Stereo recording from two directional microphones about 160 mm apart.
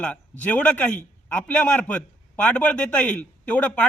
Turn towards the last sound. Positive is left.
turn(degrees=10)  # may be behind; listen again after turning